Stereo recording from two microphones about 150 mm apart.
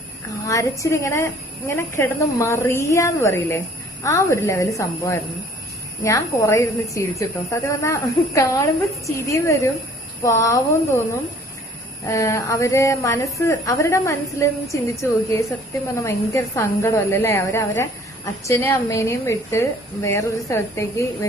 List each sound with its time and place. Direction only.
0.4 s a woman's voice: 20° left (ahead or behind)